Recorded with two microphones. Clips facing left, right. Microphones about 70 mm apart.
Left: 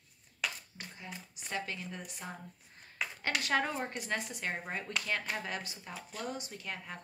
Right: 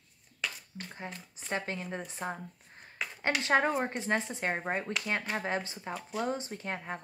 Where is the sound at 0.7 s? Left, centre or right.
Right.